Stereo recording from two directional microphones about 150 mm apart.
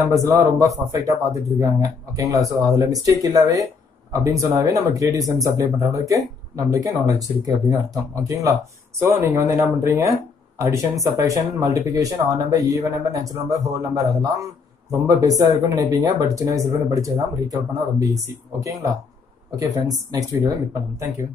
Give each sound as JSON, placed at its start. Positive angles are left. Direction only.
{"t": 0.0, "sound": "speech", "side_deg": -20}